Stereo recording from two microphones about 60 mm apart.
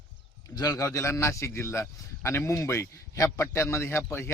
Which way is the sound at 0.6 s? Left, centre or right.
Left.